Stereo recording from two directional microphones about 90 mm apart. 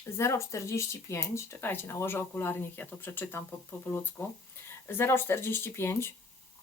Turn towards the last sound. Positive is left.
turn(degrees=30)  # may be behind; listen again after turning